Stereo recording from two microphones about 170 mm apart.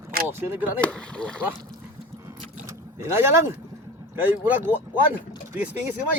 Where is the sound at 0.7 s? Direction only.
5° left (ahead or behind).